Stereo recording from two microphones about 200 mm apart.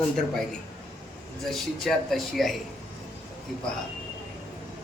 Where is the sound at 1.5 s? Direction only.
Centre (ahead or behind).